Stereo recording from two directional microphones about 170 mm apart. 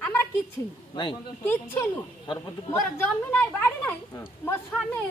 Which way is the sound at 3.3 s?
10° left (ahead or behind).